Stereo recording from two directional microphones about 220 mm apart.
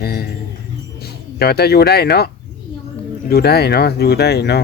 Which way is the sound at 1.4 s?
45° left (ahead or behind).